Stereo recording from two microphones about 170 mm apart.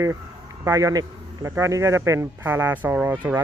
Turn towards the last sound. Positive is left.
turn(degrees=-10)  # may be behind; listen again after turning